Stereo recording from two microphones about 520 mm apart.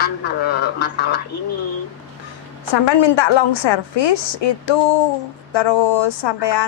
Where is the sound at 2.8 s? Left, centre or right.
Left.